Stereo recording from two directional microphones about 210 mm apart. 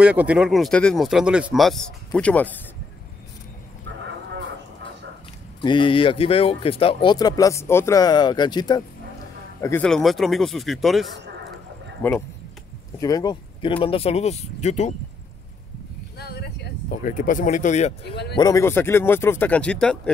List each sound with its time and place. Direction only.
0.0 s speech: 5° right (ahead or behind)
5.6 s speech: 20° left (ahead or behind)
16.2 s speech: 50° left (ahead or behind); by 17.9 s 35° left (ahead or behind)
18.3 s speech: 15° left (ahead or behind)